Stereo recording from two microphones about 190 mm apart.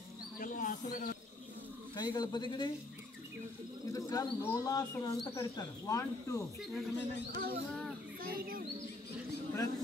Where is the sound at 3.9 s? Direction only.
20° left (ahead or behind).